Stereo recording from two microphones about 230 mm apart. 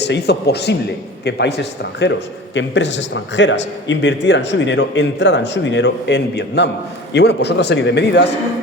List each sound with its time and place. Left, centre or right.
0.0 s a man's voice: left